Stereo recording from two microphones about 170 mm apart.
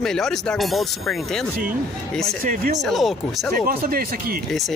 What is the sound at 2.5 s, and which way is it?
Speech, 50° right (ahead or behind).